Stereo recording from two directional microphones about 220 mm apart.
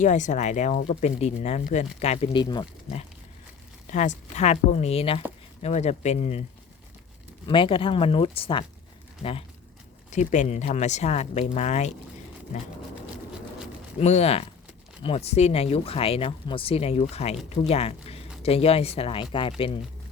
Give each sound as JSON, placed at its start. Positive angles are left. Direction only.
{"t": 0.0, "sound": "speech", "side_deg": 35}
{"t": 4.4, "sound": "speech", "side_deg": 30}
{"t": 7.4, "sound": "speech", "side_deg": 20}
{"t": 10.1, "sound": "speech", "side_deg": 35}
{"t": 14.0, "sound": "speech", "side_deg": 30}